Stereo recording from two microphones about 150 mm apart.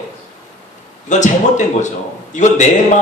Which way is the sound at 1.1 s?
55° left (ahead or behind).